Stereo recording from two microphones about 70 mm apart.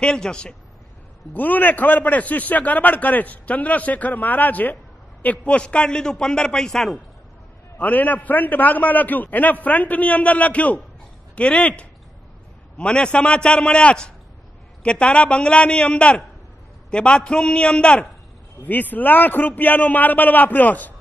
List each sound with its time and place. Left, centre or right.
0.0 s a man's voice: centre
1.3 s a man's voice: left; by 7.0 s centre
7.7 s a man's voice: left
12.7 s a man's voice: centre
18.6 s a man's voice: left